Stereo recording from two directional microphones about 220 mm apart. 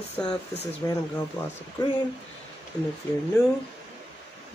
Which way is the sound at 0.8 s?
15° left (ahead or behind).